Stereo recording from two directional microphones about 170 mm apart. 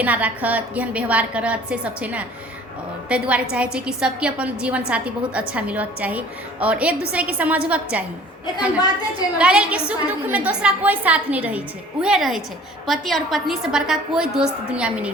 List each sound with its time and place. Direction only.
0.0 s a woman's voice: 10° right (ahead or behind)
9.4 s a woman's voice: 5° right (ahead or behind)